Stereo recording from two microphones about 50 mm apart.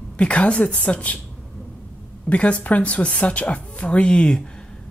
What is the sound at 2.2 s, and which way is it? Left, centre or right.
Speech, left.